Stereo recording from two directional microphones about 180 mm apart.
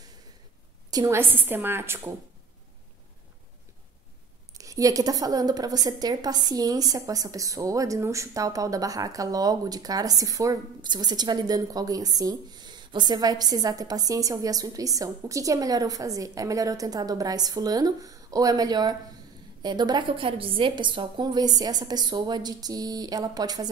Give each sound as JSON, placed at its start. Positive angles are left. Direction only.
{"t": 0.8, "sound": "a woman's voice", "side_deg": -20}
{"t": 4.6, "sound": "a woman's voice", "side_deg": -20}